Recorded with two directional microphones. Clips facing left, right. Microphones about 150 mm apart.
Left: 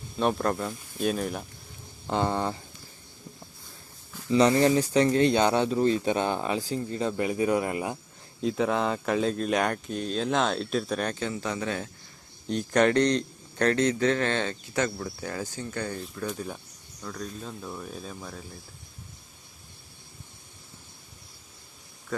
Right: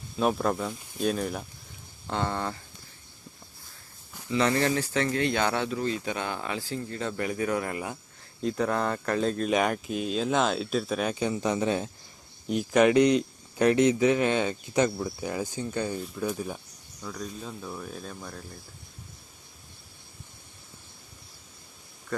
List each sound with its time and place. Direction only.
0.2 s speech: 5° right (ahead or behind)
2.0 s a sound: 15° left (ahead or behind)
4.3 s speech: 20° left (ahead or behind)
8.4 s speech: 5° left (ahead or behind); by 11.9 s 20° right (ahead or behind)
12.5 s a man's voice: 10° right (ahead or behind)